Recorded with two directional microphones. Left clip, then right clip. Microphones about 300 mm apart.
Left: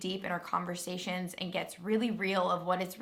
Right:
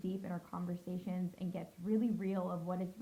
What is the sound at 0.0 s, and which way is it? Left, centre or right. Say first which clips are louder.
Speech: left 9 dB; centre.